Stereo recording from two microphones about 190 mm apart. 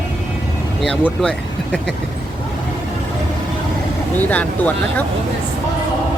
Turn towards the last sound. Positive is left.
turn(degrees=10)  # may be behind; listen again after turning